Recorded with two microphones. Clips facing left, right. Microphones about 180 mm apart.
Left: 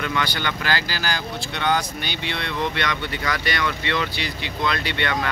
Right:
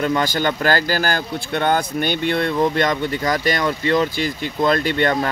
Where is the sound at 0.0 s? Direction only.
45° right (ahead or behind).